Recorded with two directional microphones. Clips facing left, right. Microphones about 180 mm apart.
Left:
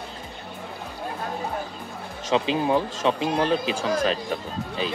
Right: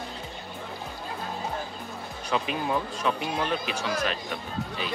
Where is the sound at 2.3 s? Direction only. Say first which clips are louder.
Left 6 dB; 25° left (ahead or behind).